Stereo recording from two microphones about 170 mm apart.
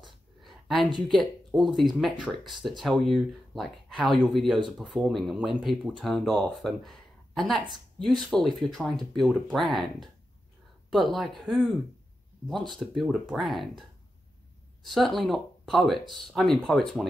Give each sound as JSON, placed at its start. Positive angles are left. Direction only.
{"t": 0.0, "sound": "a sound", "side_deg": 0}
{"t": 1.0, "sound": "speech", "side_deg": 0}
{"t": 12.7, "sound": "speech", "side_deg": 0}